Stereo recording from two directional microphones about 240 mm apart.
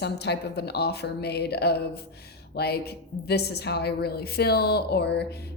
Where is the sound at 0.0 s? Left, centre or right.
Left.